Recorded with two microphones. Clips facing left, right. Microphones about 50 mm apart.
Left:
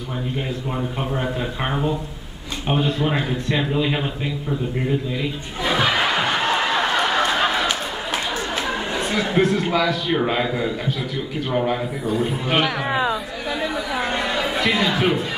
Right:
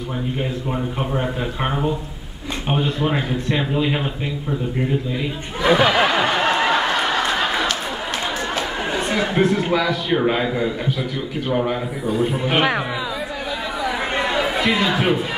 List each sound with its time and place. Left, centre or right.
0.9 s a man's voice: centre
5.6 s speech: right
6.0 s a sound: centre
8.9 s a man's voice: centre
12.5 s speech: right
14.2 s chatter: centre